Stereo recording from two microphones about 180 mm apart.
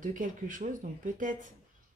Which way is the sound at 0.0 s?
45° right (ahead or behind).